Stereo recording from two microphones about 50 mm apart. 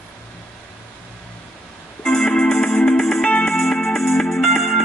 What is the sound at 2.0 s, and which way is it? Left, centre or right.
Music, centre.